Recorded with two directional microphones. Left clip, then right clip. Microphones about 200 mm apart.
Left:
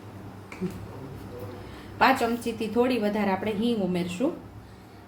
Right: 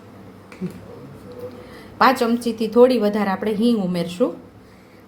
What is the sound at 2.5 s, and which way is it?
A woman's voice, 40° right (ahead or behind).